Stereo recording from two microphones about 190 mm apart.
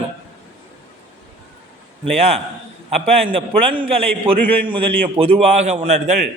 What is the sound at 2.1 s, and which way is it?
A man's voice, 35° right (ahead or behind).